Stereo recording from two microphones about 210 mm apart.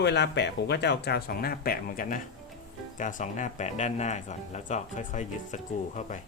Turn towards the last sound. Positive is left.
turn(degrees=35)  # may be behind; listen again after turning